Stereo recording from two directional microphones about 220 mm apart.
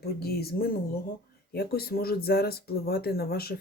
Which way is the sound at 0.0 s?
45° left (ahead or behind).